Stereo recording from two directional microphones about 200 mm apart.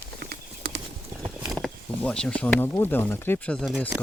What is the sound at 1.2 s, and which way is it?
Speech, centre (ahead or behind).